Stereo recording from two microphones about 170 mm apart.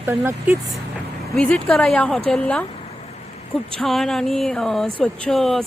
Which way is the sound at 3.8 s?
Centre (ahead or behind).